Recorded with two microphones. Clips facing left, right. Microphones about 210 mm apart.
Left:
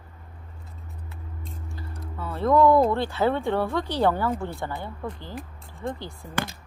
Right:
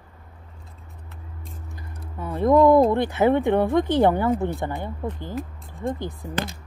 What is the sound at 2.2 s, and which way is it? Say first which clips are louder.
Speech: right 3 dB; 15° right (ahead or behind).